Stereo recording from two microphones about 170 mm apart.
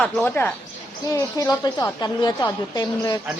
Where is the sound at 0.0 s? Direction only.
10° left (ahead or behind).